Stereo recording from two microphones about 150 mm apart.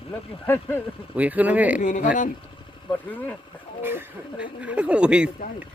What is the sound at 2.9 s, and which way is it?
Speech, 10° left (ahead or behind).